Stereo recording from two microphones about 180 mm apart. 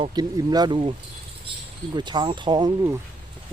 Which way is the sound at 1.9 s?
25° right (ahead or behind).